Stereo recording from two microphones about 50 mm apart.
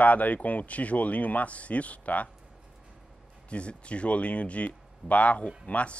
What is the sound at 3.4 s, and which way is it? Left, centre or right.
A man's voice, left.